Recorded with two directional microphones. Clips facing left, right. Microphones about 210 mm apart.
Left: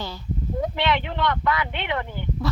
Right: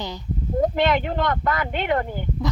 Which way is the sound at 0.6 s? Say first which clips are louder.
Right 5 dB; 45° right (ahead or behind).